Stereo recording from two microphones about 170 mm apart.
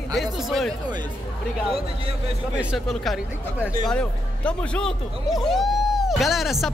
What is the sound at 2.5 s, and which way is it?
A man's voice, 5° right (ahead or behind).